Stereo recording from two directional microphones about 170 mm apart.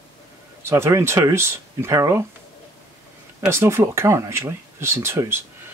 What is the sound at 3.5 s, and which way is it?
Speech, 15° right (ahead or behind).